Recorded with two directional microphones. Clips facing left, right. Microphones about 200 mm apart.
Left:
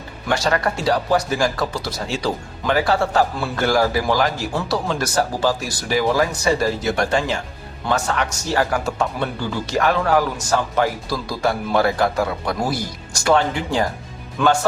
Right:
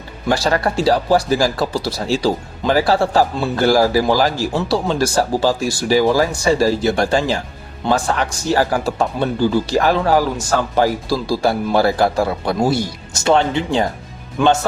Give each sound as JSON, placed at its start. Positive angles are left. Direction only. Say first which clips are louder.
{"t": 0.3, "sound": "a man's voice", "louder": "right 3 dB", "side_deg": -35}